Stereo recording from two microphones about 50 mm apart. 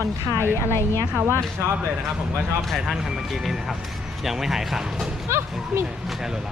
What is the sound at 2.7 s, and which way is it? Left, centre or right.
Speech, centre.